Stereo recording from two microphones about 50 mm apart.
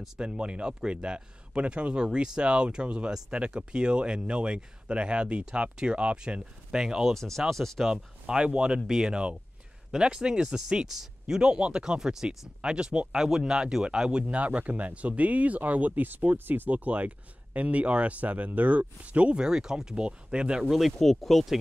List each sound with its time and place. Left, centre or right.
0.2 s speech: centre
7.2 s speech: centre
7.9 s speech: centre
8.8 s speech: centre
9.1 s speech: centre
20.7 s speech: centre